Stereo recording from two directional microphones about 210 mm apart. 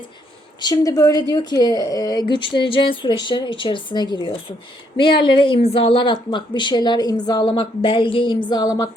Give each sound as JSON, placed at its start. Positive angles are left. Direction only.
{"t": 0.6, "sound": "speech", "side_deg": 15}